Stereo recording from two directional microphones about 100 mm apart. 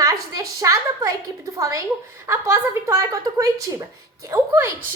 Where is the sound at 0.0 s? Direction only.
35° right (ahead or behind).